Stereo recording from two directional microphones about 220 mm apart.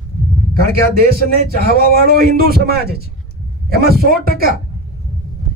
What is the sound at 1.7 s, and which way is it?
Speech, 45° right (ahead or behind).